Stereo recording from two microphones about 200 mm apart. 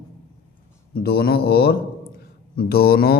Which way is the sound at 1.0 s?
50° left (ahead or behind).